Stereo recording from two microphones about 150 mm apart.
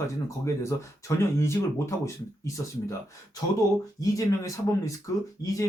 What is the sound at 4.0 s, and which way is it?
Speech, 20° left (ahead or behind).